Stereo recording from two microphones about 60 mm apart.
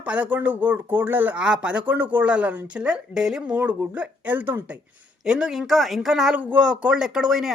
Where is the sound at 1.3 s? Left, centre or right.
Centre.